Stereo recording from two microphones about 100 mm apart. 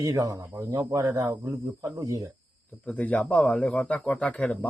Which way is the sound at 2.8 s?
15° left (ahead or behind).